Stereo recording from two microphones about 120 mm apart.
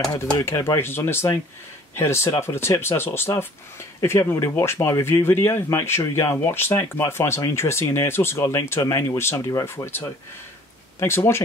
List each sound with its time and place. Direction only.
0.4 s speech: 30° left (ahead or behind)